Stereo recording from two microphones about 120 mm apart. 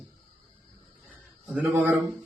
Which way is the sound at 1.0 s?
10° right (ahead or behind).